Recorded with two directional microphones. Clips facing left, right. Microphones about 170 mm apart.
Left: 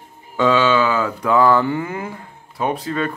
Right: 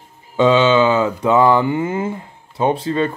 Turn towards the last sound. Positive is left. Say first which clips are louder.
# right 4 dB
turn(degrees=-25)  # may be behind; listen again after turning